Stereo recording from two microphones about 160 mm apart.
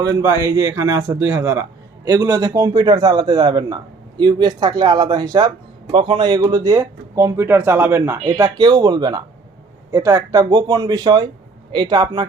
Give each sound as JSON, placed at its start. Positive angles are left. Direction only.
{"t": 0.0, "sound": "speech", "side_deg": -20}
{"t": 8.4, "sound": "speech", "side_deg": -25}